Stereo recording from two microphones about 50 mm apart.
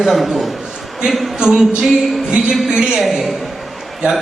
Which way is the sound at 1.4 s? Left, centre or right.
Centre.